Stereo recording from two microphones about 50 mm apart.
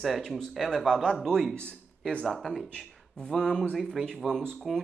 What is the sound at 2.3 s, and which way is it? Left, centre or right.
Speech, centre.